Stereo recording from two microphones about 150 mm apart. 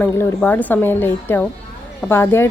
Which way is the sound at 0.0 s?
20° left (ahead or behind).